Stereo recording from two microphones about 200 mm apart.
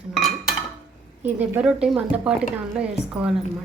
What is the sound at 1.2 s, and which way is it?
Speech, 10° right (ahead or behind).